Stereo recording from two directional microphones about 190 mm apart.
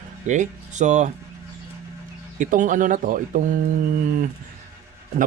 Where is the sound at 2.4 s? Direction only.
40° right (ahead or behind).